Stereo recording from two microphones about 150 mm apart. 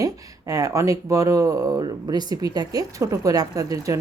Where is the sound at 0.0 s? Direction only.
25° right (ahead or behind).